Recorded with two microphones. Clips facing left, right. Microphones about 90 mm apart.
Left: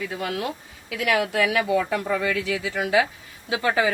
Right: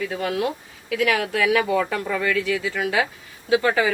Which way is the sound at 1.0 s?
35° left (ahead or behind).